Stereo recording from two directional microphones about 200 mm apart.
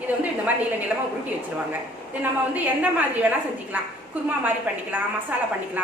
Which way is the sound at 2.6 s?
10° right (ahead or behind).